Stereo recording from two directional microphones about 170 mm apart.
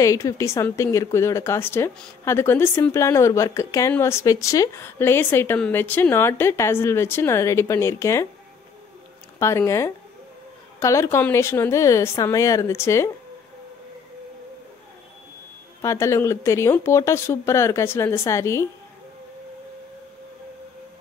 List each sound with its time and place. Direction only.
0.0 s speech: 20° left (ahead or behind)
9.4 s speech: 15° left (ahead or behind)
15.8 s speech: 15° left (ahead or behind)